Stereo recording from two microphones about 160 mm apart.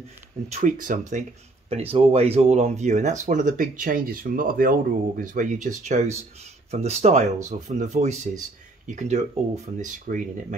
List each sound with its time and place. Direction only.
0.5 s speech: 50° right (ahead or behind)
1.7 s speech: 40° right (ahead or behind); by 10.3 s 55° right (ahead or behind)